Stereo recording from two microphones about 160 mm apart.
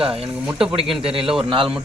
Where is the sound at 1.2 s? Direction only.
5° right (ahead or behind).